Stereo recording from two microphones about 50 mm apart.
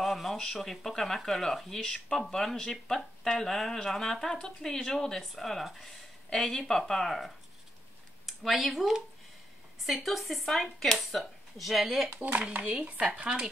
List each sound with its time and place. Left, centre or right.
0.0 s speech: centre
12.4 s speech: right